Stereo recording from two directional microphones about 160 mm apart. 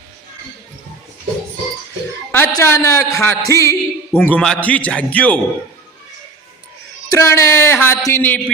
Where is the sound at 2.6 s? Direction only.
20° left (ahead or behind).